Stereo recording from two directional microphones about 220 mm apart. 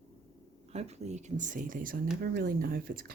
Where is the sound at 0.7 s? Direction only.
30° right (ahead or behind).